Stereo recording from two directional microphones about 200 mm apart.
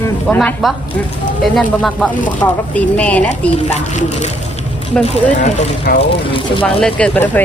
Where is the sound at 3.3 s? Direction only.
35° left (ahead or behind).